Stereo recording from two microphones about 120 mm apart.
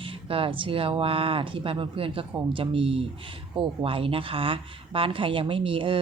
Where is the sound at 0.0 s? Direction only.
50° right (ahead or behind).